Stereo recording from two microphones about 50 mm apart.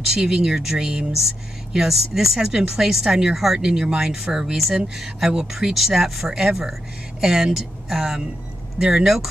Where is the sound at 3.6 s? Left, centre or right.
Centre.